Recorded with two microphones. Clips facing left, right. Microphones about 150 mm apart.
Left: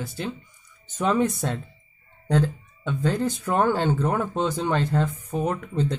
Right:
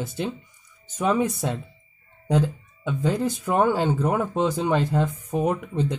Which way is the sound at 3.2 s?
10° right (ahead or behind).